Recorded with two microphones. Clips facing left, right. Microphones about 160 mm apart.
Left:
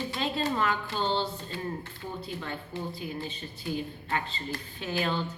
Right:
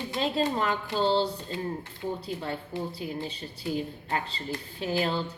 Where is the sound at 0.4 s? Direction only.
30° right (ahead or behind).